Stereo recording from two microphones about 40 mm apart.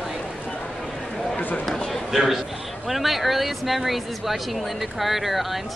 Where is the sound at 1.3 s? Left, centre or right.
Left.